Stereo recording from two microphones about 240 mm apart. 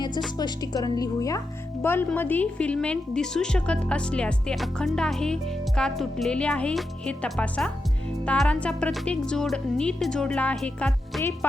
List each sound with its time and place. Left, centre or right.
0.3 s a woman's voice: centre